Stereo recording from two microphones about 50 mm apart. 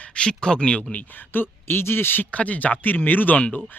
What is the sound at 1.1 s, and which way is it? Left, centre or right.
Speech, left.